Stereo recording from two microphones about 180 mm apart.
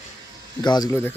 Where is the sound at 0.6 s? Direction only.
20° left (ahead or behind).